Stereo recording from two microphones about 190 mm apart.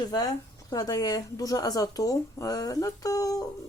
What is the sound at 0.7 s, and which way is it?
Speech, 20° left (ahead or behind).